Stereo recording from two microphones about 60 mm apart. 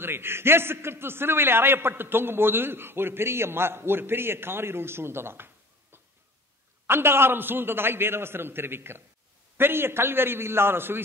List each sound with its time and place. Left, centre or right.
0.0 s a man's voice: right